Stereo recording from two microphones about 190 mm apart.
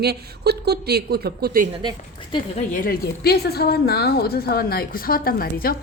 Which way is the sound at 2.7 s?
50° left (ahead or behind).